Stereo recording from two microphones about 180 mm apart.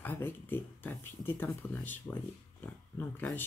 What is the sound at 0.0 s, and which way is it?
Speech, 10° left (ahead or behind).